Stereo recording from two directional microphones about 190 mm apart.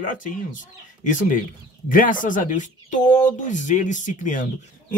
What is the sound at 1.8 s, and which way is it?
Speech, 45° left (ahead or behind).